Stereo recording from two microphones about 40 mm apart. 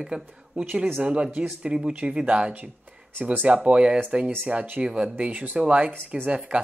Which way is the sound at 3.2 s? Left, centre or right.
Right.